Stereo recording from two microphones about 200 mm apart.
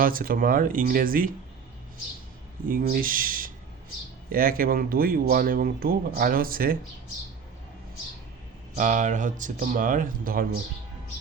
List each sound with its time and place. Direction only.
0.0 s speech: 45° right (ahead or behind)
2.6 s speech: 45° right (ahead or behind)
8.8 s speech: 40° right (ahead or behind)